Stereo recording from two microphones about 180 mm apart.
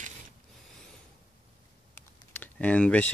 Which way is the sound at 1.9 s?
10° left (ahead or behind).